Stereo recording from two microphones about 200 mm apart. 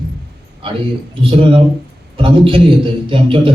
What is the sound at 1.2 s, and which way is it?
A man's voice, 25° right (ahead or behind).